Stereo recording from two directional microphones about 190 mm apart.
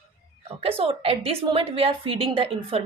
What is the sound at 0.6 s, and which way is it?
A woman's voice, 30° right (ahead or behind).